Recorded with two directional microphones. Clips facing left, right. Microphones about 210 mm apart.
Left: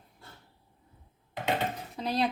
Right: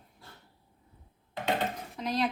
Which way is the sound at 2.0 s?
35° left (ahead or behind).